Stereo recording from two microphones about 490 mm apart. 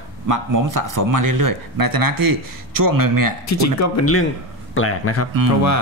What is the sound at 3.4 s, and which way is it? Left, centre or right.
A man's voice, left.